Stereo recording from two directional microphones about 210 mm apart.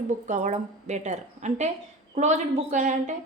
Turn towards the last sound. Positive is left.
turn(degrees=-35)  # may be behind; listen again after turning